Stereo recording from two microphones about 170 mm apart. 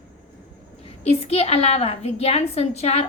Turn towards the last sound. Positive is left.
turn(degrees=40)  # may be behind; listen again after turning